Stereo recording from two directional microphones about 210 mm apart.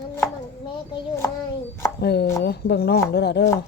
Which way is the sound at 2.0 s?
50° left (ahead or behind).